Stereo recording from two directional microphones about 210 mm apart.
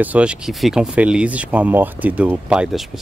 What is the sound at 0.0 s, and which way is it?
Speech, 5° right (ahead or behind).